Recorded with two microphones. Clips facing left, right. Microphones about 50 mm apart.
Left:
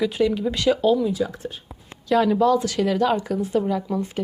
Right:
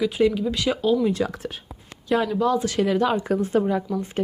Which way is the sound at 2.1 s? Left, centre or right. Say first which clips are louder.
Left 3 dB; centre.